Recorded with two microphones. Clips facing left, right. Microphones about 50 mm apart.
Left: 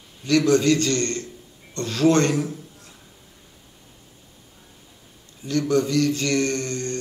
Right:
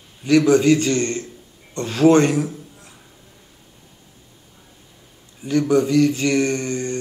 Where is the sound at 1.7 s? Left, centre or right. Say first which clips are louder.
Right 5 dB; centre.